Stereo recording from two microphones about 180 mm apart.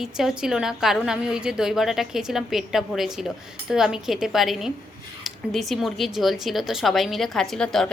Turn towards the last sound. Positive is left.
turn(degrees=0)  # may be behind; listen again after turning